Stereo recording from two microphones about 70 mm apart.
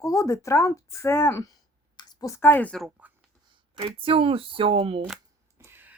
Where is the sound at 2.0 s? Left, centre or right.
Left.